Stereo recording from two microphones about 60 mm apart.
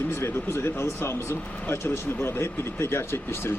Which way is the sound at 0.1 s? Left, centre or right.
Left.